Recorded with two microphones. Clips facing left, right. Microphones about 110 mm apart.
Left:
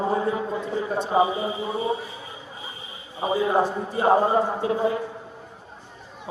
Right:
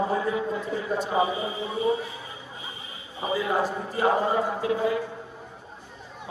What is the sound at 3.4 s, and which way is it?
A man's voice, 30° left (ahead or behind).